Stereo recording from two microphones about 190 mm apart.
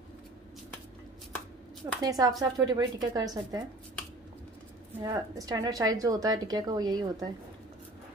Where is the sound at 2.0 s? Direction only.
20° right (ahead or behind).